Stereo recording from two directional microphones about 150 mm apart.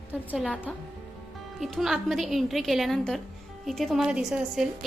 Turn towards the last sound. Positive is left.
turn(degrees=-5)  # may be behind; listen again after turning